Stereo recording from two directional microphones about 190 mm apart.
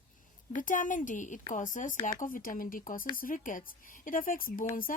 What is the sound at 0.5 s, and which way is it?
A woman's voice, 45° left (ahead or behind).